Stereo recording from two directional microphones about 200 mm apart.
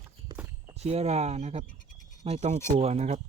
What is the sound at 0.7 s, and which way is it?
Speech, 30° right (ahead or behind).